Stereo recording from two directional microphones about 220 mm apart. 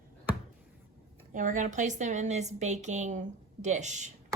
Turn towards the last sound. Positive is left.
turn(degrees=-35)  # may be behind; listen again after turning